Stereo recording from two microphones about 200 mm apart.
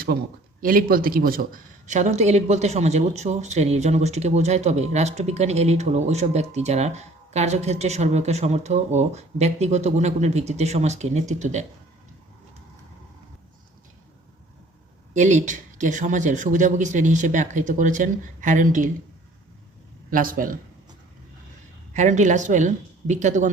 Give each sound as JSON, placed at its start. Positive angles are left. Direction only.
{"t": 0.6, "sound": "a man's voice", "side_deg": -45}
{"t": 1.9, "sound": "speech", "side_deg": -35}
{"t": 15.1, "sound": "speech", "side_deg": -35}
{"t": 20.1, "sound": "a man's voice", "side_deg": -45}
{"t": 21.9, "sound": "speech", "side_deg": -35}